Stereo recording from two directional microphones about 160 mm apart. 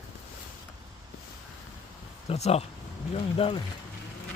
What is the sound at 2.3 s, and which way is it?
Speech, 40° left (ahead or behind).